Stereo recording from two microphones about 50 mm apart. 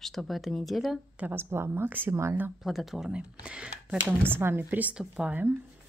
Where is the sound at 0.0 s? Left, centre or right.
Centre.